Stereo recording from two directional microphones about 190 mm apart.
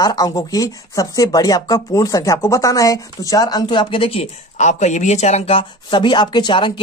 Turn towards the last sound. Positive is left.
turn(degrees=25)  # may be behind; listen again after turning